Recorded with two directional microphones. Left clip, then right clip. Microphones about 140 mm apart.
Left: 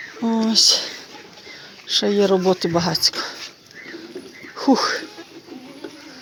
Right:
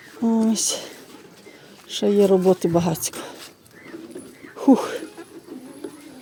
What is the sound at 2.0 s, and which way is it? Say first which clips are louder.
Speech: right 2 dB; 30° right (ahead or behind).